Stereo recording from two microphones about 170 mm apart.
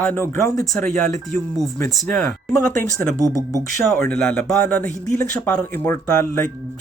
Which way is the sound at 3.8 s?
5° left (ahead or behind).